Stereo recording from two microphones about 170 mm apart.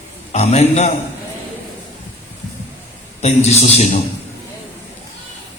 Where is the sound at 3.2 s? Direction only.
40° left (ahead or behind).